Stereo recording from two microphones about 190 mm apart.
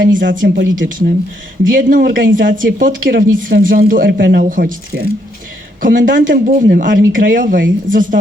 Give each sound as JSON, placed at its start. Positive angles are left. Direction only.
{"t": 0.0, "sound": "speech", "side_deg": -45}